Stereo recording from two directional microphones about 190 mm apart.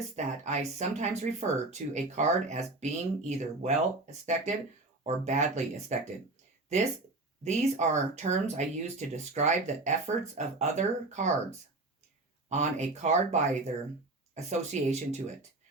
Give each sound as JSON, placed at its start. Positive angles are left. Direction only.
{"t": 0.2, "sound": "speech", "side_deg": -35}
{"t": 7.4, "sound": "speech", "side_deg": -35}
{"t": 12.5, "sound": "speech", "side_deg": -35}